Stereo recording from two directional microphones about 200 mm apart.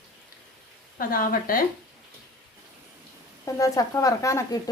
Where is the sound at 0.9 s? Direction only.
45° left (ahead or behind).